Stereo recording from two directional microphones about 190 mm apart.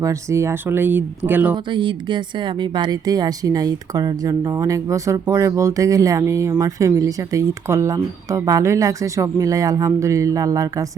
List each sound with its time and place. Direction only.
0.0 s speech: 15° right (ahead or behind)
1.5 s speech: 25° right (ahead or behind)